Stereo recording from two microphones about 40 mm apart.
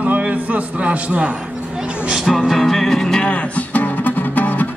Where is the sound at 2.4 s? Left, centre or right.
Centre.